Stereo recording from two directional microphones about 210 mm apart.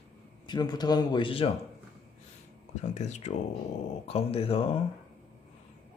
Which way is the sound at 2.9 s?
35° left (ahead or behind).